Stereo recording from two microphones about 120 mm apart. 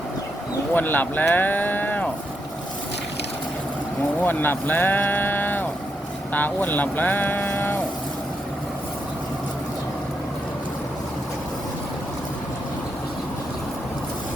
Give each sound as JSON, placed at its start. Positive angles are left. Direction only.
{"t": 0.7, "sound": "speech", "side_deg": 15}
{"t": 4.2, "sound": "speech", "side_deg": 15}